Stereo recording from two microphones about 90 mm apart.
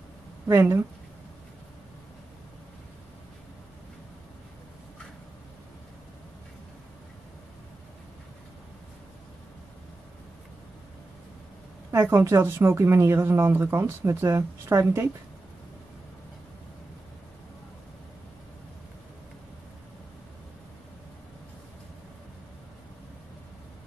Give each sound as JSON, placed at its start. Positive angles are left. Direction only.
{"t": 0.5, "sound": "a woman's voice", "side_deg": -30}
{"t": 11.9, "sound": "speech", "side_deg": -30}